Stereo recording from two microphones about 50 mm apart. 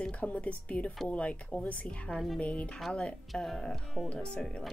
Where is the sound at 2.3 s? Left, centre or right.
Left.